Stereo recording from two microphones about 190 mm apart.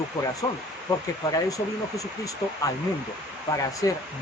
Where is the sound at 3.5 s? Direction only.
15° left (ahead or behind).